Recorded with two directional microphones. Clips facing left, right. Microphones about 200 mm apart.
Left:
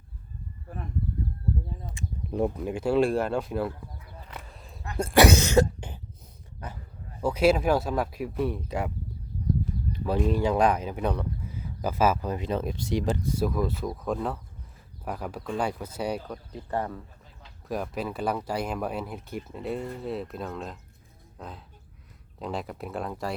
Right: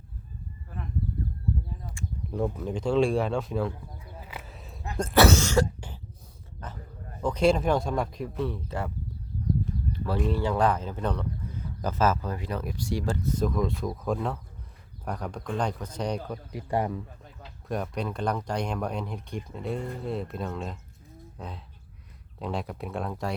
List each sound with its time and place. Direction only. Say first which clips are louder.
1.9 s speech: left 1 dB; 20° left (ahead or behind); by 3.7 s 5° left (ahead or behind)
4.2 s a sound: right 1 dB; 5° right (ahead or behind)
4.9 s speech: left 1 dB; 10° left (ahead or behind)
6.6 s a sound: left 1 dB; 10° left (ahead or behind)
7.2 s speech: left 1 dB; 5° left (ahead or behind)
9.9 s a sound: left 3 dB; 15° left (ahead or behind)
10.2 s speech: left 2 dB; 15° left (ahead or behind)
16.5 s speech: right 3 dB; 15° right (ahead or behind)
17.7 s speech: even; 5° left (ahead or behind)